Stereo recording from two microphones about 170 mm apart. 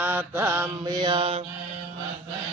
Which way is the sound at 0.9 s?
30° right (ahead or behind).